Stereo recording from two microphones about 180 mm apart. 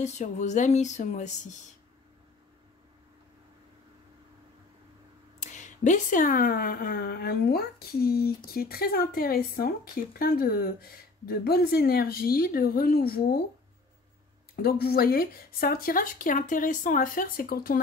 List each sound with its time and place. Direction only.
0.0 s speech: 40° left (ahead or behind)
5.4 s speech: 45° left (ahead or behind); by 13.4 s 60° left (ahead or behind)
14.5 s speech: 60° left (ahead or behind)